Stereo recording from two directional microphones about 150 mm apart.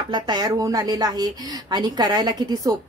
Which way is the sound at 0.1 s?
25° right (ahead or behind).